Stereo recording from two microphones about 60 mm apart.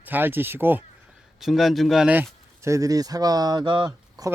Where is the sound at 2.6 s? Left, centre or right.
Right.